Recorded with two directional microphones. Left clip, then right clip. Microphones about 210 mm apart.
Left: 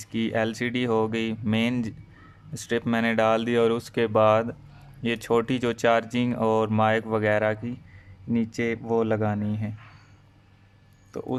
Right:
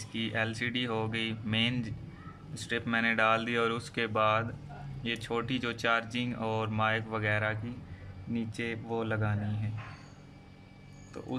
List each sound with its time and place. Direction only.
0.0 s speech: 30° left (ahead or behind)
11.1 s speech: 30° left (ahead or behind)